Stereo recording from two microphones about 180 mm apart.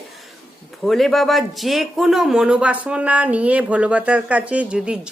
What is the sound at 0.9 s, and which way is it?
Speech, centre (ahead or behind).